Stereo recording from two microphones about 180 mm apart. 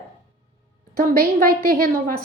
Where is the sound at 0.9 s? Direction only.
50° right (ahead or behind).